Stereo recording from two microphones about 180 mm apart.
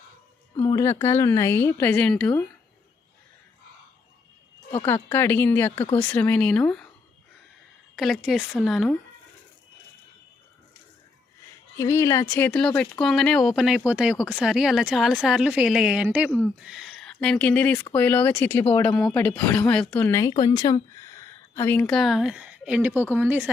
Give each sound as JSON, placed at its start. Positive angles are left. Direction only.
{"t": 0.5, "sound": "a sound", "side_deg": 25}
{"t": 0.8, "sound": "speech", "side_deg": 15}
{"t": 4.9, "sound": "speech", "side_deg": 10}
{"t": 7.9, "sound": "speech", "side_deg": 0}
{"t": 11.8, "sound": "speech", "side_deg": 15}
{"t": 21.5, "sound": "speech", "side_deg": 15}